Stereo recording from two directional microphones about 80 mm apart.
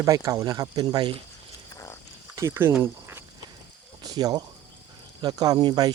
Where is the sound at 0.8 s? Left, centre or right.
Right.